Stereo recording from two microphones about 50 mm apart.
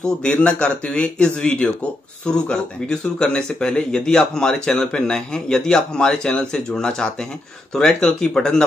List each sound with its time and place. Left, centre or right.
0.0 s speech: left